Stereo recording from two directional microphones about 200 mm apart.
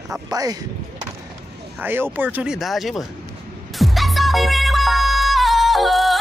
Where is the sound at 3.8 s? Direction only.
Centre (ahead or behind).